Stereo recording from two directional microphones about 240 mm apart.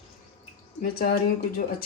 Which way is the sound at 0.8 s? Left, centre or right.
Left.